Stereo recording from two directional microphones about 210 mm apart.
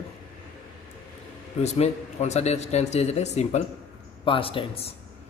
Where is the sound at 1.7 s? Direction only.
30° left (ahead or behind).